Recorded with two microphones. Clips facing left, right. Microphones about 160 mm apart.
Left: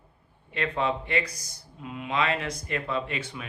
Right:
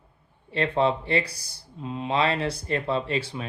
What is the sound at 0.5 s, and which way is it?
Speech, 30° right (ahead or behind).